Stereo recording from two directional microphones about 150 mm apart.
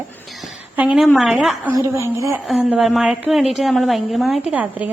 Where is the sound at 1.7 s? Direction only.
20° right (ahead or behind).